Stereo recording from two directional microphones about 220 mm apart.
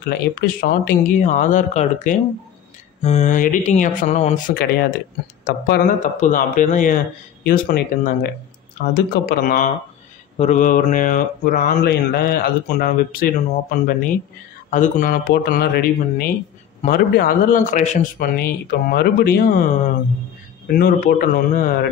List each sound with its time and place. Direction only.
0.0 s mantra: 45° left (ahead or behind)
5.7 s mantra: 35° left (ahead or behind)
7.4 s speech: 45° left (ahead or behind)
10.3 s mantra: 30° left (ahead or behind)